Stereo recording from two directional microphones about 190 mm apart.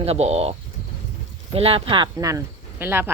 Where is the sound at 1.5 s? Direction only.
30° right (ahead or behind); by 3.1 s 10° right (ahead or behind).